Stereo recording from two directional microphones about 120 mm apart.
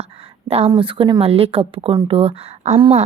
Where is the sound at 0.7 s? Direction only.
45° right (ahead or behind); by 2.8 s 60° right (ahead or behind).